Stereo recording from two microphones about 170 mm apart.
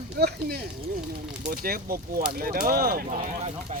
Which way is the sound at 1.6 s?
60° right (ahead or behind).